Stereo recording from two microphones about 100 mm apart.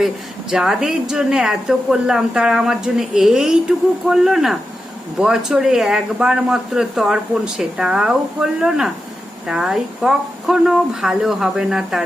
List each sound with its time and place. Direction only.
0.5 s a woman's voice: 5° right (ahead or behind)